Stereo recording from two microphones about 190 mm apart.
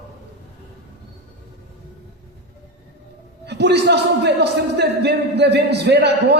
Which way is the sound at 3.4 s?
60° right (ahead or behind).